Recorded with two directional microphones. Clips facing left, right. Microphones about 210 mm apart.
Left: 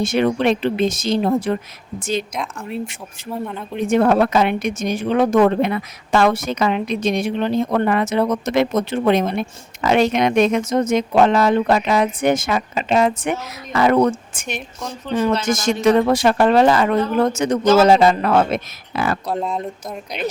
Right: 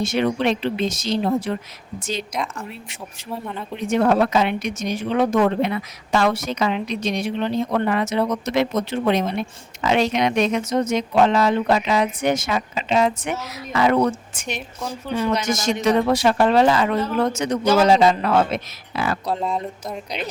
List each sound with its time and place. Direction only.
0.0 s speech: 50° left (ahead or behind)
2.3 s speech: centre (ahead or behind)
3.8 s speech: 50° left (ahead or behind)
15.1 s speech: 10° right (ahead or behind)
15.4 s speech: 50° left (ahead or behind)
19.3 s speech: centre (ahead or behind)